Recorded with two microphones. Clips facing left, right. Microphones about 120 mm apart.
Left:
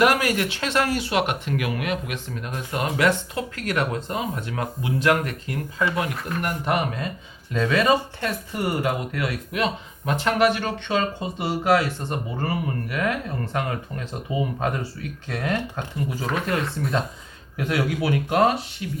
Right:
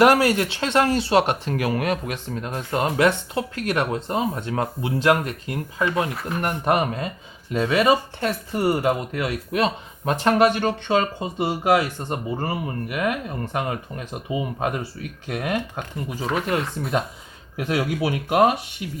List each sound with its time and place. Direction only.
0.0 s speech: 30° right (ahead or behind)
7.5 s speech: 15° right (ahead or behind)
8.5 s speech: 30° right (ahead or behind)
11.3 s speech: 15° right (ahead or behind)